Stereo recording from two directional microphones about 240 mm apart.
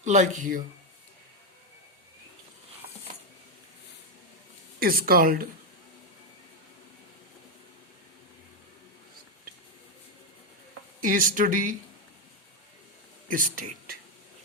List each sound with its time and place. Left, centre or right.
0.0 s speech: right
4.8 s speech: right
11.0 s speech: right
13.2 s speech: right